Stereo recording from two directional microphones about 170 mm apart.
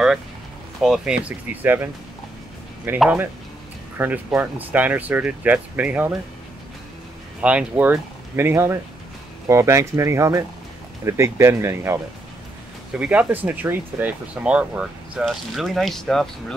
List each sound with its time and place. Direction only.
0.8 s speech: 5° right (ahead or behind)
3.0 s speech: 10° right (ahead or behind)
7.4 s speech: 10° right (ahead or behind)